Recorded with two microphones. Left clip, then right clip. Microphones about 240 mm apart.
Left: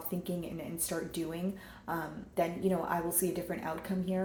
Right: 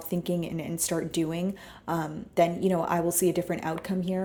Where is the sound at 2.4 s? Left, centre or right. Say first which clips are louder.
Right 8 dB; right.